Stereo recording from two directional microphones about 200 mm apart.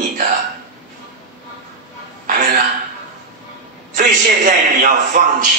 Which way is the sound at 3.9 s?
40° right (ahead or behind).